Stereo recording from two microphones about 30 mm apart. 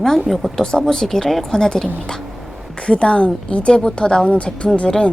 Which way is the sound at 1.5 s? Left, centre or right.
Left.